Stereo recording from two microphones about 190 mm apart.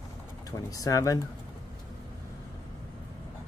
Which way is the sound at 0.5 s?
15° left (ahead or behind).